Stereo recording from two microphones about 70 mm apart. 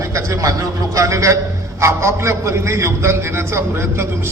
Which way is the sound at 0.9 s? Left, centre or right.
Right.